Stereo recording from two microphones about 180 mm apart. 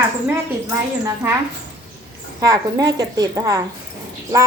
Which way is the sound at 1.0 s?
15° right (ahead or behind).